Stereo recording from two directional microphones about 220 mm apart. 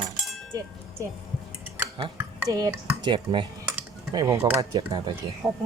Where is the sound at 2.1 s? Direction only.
15° right (ahead or behind).